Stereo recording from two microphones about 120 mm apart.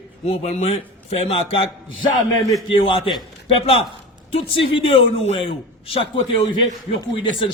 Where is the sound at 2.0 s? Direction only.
35° left (ahead or behind).